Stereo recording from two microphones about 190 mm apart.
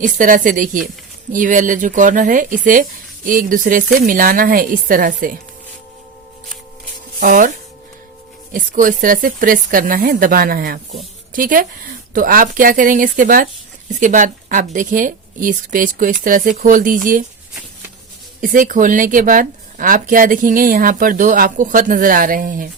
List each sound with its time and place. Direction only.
0.0 s speech: 45° right (ahead or behind)
7.2 s speech: 45° right (ahead or behind)
8.5 s speech: 45° right (ahead or behind)
18.3 s speech: 45° right (ahead or behind)